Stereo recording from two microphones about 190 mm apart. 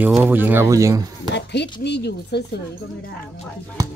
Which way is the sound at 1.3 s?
65° left (ahead or behind).